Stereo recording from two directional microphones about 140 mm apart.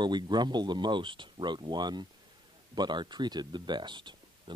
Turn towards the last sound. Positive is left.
turn(degrees=-35)  # may be behind; listen again after turning